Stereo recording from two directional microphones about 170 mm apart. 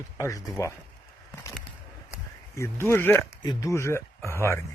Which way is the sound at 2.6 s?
15° left (ahead or behind).